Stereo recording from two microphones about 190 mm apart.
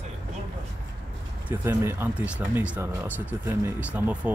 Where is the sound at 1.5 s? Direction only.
10° right (ahead or behind).